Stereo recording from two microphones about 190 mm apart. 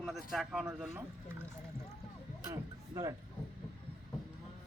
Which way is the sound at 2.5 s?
20° right (ahead or behind).